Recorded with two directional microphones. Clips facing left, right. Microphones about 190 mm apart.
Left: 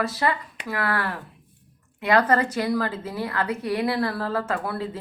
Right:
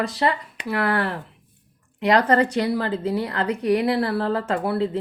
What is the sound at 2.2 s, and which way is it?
A woman's voice, 30° right (ahead or behind).